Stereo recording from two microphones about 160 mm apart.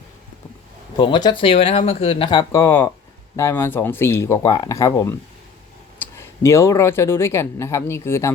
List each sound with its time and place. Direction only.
0.9 s speech: 30° left (ahead or behind)
2.6 s speech: 15° left (ahead or behind)